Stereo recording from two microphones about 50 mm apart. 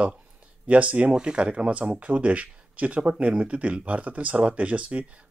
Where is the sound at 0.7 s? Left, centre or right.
Right.